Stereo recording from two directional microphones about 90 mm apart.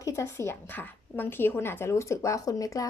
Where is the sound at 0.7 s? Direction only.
20° left (ahead or behind); by 2.9 s 40° left (ahead or behind).